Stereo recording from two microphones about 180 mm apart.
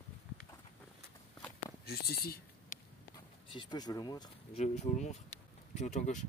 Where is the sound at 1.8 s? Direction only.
60° left (ahead or behind).